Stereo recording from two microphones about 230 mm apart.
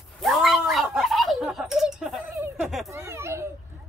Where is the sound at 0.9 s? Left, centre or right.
Centre.